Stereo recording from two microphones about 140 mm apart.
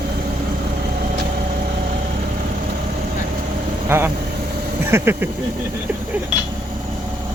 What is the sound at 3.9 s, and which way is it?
Speech, 15° right (ahead or behind).